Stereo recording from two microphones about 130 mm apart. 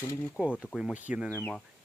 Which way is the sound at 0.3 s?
10° right (ahead or behind).